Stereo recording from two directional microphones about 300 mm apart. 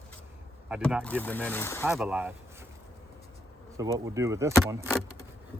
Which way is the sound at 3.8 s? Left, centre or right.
Centre.